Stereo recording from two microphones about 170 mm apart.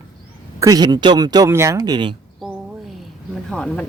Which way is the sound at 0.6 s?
20° right (ahead or behind).